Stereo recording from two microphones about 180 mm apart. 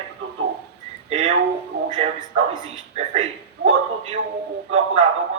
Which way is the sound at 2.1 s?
25° right (ahead or behind).